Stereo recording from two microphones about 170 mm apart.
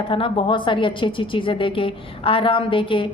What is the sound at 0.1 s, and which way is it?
A woman's voice, 30° left (ahead or behind).